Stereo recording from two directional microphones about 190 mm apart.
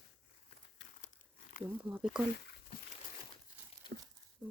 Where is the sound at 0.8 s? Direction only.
65° left (ahead or behind).